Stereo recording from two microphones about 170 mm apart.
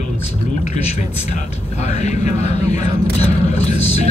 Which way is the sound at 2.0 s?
40° left (ahead or behind).